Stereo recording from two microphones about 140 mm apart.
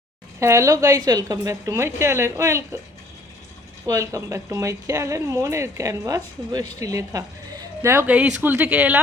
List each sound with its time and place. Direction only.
0.3 s speech: 20° right (ahead or behind)
3.8 s speech: 20° right (ahead or behind)